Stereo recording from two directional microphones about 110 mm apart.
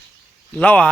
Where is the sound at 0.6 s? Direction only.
15° left (ahead or behind).